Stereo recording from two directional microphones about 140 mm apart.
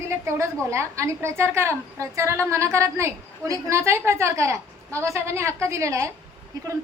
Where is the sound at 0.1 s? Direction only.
20° right (ahead or behind).